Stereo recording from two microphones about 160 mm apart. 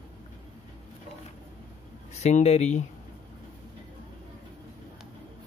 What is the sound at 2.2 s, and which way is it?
Speech, 45° left (ahead or behind).